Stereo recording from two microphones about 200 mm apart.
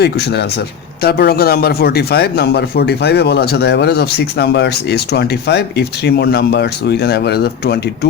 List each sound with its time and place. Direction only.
0.0 s a man's voice: 55° left (ahead or behind)